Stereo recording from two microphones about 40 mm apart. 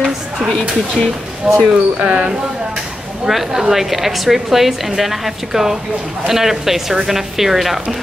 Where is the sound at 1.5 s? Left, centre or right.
Centre.